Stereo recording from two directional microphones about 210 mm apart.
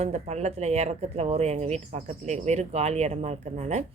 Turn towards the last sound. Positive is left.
turn(degrees=-30)  # may be behind; listen again after turning